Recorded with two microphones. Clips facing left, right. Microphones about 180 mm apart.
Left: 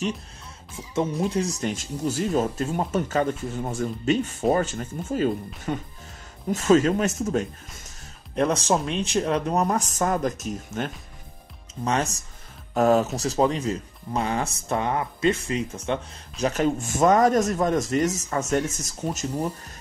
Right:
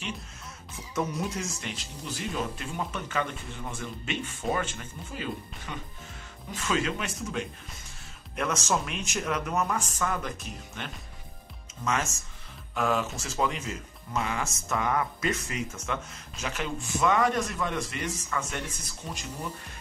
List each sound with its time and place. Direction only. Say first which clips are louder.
0.9 s speech: left 7 dB; 30° left (ahead or behind); by 7.4 s 45° left (ahead or behind)
8.4 s speech: left 7 dB; 35° left (ahead or behind)